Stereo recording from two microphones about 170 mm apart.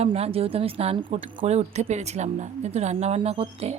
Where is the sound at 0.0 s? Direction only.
35° right (ahead or behind).